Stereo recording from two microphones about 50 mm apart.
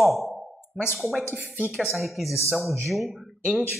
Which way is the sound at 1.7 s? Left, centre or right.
Centre.